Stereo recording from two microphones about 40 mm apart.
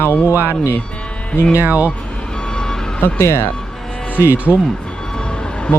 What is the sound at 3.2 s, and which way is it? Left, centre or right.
Speech, left.